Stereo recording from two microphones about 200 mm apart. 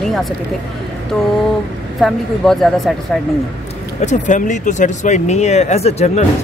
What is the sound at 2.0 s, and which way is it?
Speech, centre (ahead or behind).